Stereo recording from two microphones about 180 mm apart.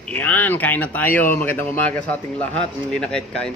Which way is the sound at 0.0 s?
10° left (ahead or behind).